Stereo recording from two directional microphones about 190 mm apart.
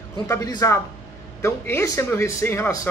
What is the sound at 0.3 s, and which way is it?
A man's voice, 20° left (ahead or behind).